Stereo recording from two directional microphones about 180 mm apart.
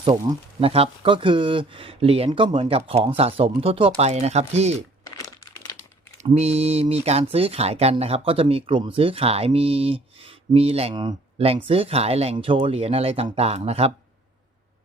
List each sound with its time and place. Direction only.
0.0 s speech: 25° right (ahead or behind)
5.0 s crumpling: 20° left (ahead or behind)
6.3 s speech: 35° right (ahead or behind)